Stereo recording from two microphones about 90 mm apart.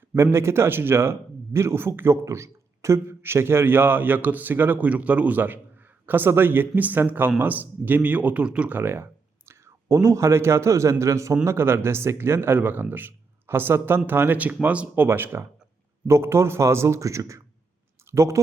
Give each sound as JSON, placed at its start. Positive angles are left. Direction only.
{"t": 0.2, "sound": "a man's voice", "side_deg": -30}
{"t": 8.8, "sound": "a man's voice", "side_deg": -25}
{"t": 18.0, "sound": "a sound", "side_deg": -30}